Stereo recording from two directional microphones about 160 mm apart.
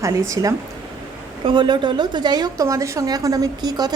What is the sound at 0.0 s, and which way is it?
A woman's voice, 20° right (ahead or behind).